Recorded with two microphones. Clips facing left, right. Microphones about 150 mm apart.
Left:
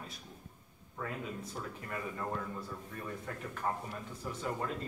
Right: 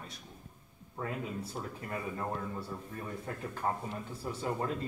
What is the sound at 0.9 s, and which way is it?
A man's voice, 30° right (ahead or behind).